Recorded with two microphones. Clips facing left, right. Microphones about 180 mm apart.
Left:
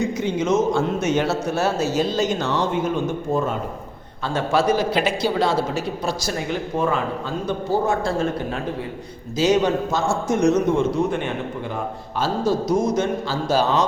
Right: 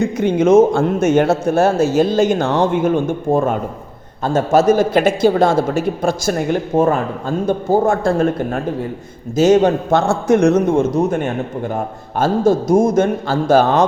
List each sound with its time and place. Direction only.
0.2 s a man's voice: 55° right (ahead or behind)
10.8 s a man's voice: 45° right (ahead or behind)